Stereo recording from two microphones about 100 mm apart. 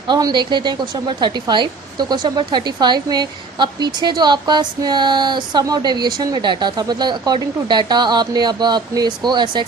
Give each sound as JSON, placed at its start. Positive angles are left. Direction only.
{"t": 0.1, "sound": "speech", "side_deg": -45}